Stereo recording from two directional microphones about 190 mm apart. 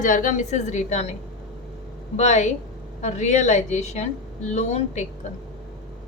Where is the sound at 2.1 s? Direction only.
35° left (ahead or behind).